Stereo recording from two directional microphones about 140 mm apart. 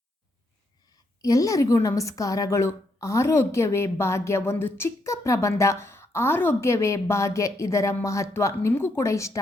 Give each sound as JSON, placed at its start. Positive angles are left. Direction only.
{"t": 1.2, "sound": "a woman's voice", "side_deg": 25}